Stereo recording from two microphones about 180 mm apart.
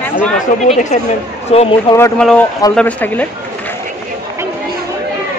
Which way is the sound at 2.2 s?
5° left (ahead or behind).